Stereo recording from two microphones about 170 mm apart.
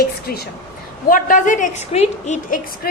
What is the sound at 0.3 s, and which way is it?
A woman's voice, 60° left (ahead or behind).